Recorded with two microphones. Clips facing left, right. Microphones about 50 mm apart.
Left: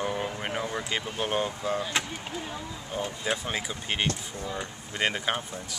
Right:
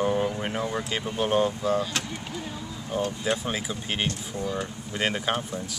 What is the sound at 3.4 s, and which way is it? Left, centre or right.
Speech, centre.